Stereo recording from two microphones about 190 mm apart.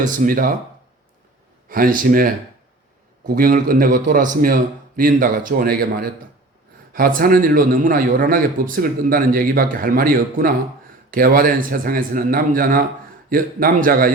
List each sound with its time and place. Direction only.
0.0 s a man's voice: 45° right (ahead or behind)
1.7 s a man's voice: 50° right (ahead or behind)